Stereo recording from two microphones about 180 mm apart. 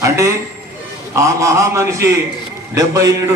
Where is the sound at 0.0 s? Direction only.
15° right (ahead or behind).